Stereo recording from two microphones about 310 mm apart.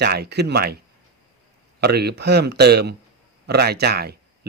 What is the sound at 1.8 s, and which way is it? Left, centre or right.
Speech, right.